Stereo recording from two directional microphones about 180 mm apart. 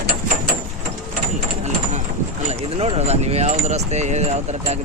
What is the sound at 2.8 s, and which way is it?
Speech, 35° right (ahead or behind).